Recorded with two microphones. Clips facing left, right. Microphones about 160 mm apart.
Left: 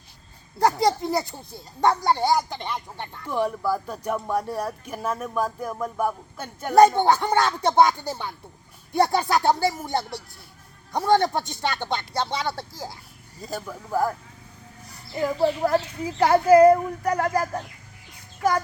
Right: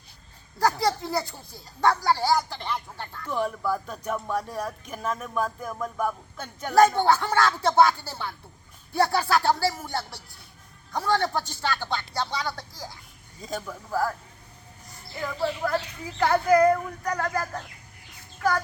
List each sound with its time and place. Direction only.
0.6 s speech: 20° left (ahead or behind)
13.4 s speech: 5° left (ahead or behind)
15.2 s speech: 30° left (ahead or behind)